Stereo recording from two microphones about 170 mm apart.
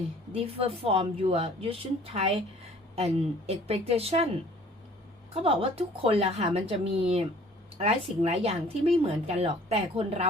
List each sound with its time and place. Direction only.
0.3 s speech: 35° right (ahead or behind)
5.3 s speech: 35° right (ahead or behind)